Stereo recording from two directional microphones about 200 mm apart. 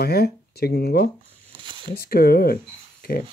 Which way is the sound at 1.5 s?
25° right (ahead or behind).